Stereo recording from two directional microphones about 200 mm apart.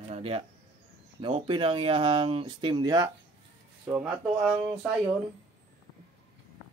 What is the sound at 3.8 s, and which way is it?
Speech, 10° right (ahead or behind).